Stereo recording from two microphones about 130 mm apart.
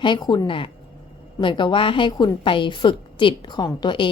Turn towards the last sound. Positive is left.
turn(degrees=40)  # may be behind; listen again after turning